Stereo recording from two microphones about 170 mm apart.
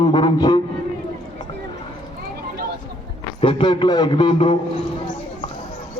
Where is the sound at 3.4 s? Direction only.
30° left (ahead or behind).